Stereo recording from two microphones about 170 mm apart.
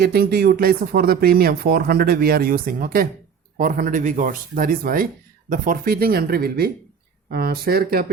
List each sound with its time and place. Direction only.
0.0 s speech: 65° right (ahead or behind)